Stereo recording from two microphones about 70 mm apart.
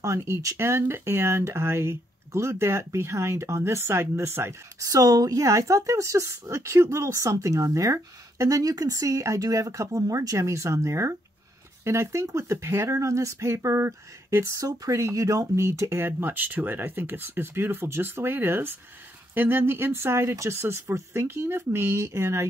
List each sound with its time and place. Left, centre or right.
0.0 s speech: right
4.7 s speech: right
16.1 s speech: right